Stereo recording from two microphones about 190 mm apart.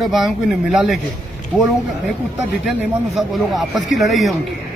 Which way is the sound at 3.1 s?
Centre (ahead or behind).